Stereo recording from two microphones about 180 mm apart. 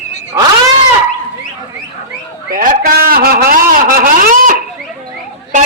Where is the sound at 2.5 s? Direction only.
50° right (ahead or behind).